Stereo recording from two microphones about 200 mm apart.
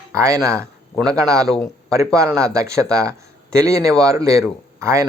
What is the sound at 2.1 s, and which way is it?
Speech, 15° right (ahead or behind).